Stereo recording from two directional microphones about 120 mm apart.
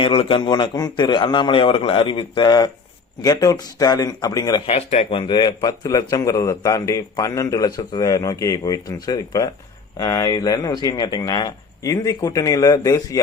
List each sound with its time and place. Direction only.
0.0 s a man's voice: 50° left (ahead or behind); by 4.6 s 30° left (ahead or behind)
4.6 s speech: 60° left (ahead or behind)
5.1 s a man's voice: 35° left (ahead or behind)